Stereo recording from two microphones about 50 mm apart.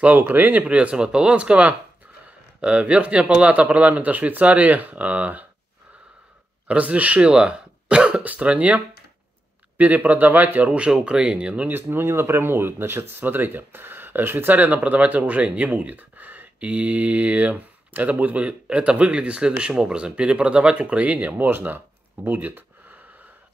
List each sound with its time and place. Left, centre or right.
0.2 s speech: right
6.7 s speech: right
11.7 s speech: right
21.5 s a sound: right